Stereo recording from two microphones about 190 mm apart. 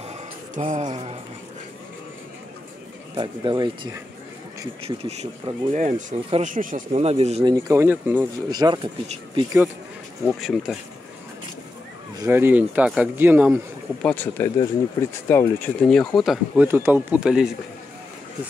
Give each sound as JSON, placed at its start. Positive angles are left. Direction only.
{"t": 0.6, "sound": "speech", "side_deg": -40}
{"t": 3.2, "sound": "speech", "side_deg": -25}
{"t": 6.9, "sound": "speech", "side_deg": -30}
{"t": 7.5, "sound": "speech", "side_deg": -15}
{"t": 10.4, "sound": "speech", "side_deg": 0}
{"t": 12.2, "sound": "speech", "side_deg": -10}
{"t": 14.0, "sound": "speech", "side_deg": 10}
{"t": 16.6, "sound": "speech", "side_deg": -10}